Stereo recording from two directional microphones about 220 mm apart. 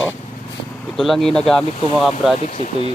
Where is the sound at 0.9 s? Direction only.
Centre (ahead or behind).